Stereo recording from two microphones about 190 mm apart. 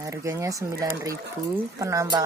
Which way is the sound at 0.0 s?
15° right (ahead or behind).